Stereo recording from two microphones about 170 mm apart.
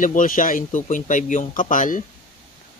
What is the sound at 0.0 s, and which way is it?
Speech, 50° left (ahead or behind).